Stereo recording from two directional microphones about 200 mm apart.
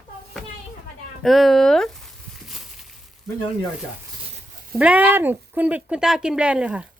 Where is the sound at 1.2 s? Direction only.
Centre (ahead or behind).